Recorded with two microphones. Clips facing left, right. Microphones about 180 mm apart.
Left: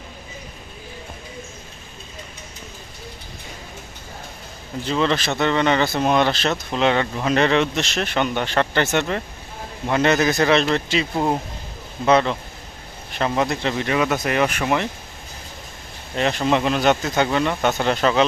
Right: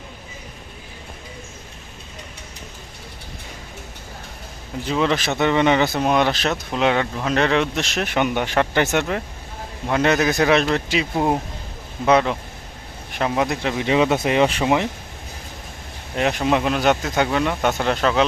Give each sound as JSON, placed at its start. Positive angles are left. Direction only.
{"t": 4.9, "sound": "speech", "side_deg": -10}
{"t": 13.8, "sound": "speech", "side_deg": -20}
{"t": 16.1, "sound": "speech", "side_deg": -10}